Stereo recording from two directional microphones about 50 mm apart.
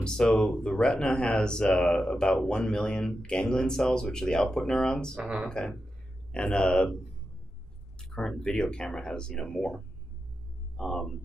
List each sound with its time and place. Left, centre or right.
0.0 s speech: centre
5.2 s speech: centre
5.5 s speech: centre
8.0 s speech: centre
10.8 s speech: centre